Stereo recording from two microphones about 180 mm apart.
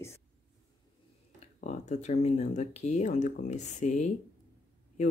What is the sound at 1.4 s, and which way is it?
Speech, 40° left (ahead or behind).